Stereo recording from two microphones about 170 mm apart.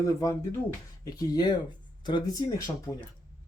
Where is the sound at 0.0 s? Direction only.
20° left (ahead or behind).